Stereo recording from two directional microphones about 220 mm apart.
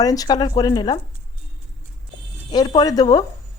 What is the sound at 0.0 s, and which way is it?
Speech, 15° left (ahead or behind).